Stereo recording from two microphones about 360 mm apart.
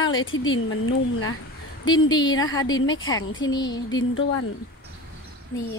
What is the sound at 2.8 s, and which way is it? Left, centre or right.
A woman's voice, left.